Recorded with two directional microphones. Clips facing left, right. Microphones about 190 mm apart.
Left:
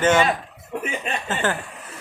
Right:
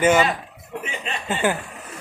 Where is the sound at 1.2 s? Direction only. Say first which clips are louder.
Right 4 dB; 15° right (ahead or behind).